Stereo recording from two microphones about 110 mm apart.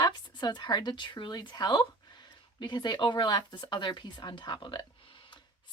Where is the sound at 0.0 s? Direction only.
40° left (ahead or behind).